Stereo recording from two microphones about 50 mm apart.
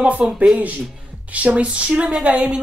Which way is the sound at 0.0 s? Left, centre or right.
Right.